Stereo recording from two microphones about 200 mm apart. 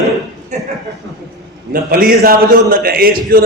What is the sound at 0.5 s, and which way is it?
Speech, 35° right (ahead or behind).